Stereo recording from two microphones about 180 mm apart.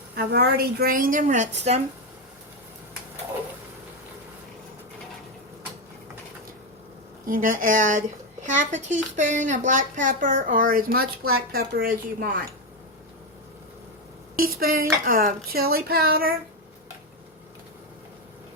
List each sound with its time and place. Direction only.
0.2 s a woman's voice: 65° right (ahead or behind); by 1.8 s 40° right (ahead or behind)
7.3 s a woman's voice: 50° right (ahead or behind)
14.3 s a woman's voice: 55° right (ahead or behind)